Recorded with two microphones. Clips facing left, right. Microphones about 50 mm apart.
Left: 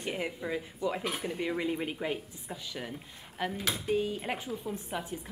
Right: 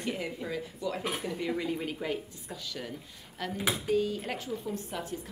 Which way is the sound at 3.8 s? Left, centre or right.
Left.